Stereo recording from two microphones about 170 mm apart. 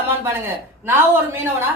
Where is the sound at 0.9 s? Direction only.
15° right (ahead or behind).